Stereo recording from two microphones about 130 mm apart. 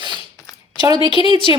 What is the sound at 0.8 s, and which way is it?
Speech, 35° right (ahead or behind).